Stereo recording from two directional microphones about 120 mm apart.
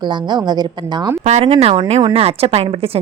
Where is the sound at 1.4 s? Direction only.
50° right (ahead or behind).